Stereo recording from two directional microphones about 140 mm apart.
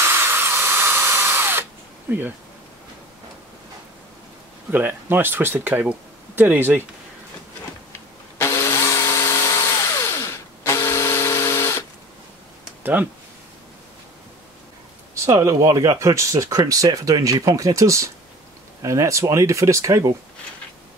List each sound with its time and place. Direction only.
0.0 s drill: 15° right (ahead or behind)
4.6 s speech: 15° right (ahead or behind)
8.4 s tools: 20° left (ahead or behind)
12.8 s speech: 10° right (ahead or behind)
15.2 s speech: 20° right (ahead or behind)